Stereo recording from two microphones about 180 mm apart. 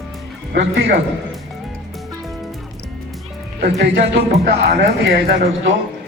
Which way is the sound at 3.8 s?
65° right (ahead or behind).